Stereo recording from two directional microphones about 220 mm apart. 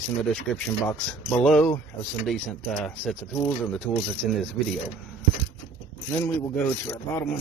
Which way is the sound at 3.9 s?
10° left (ahead or behind).